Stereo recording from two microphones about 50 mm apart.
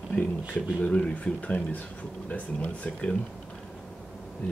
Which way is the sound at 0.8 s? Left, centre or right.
Left.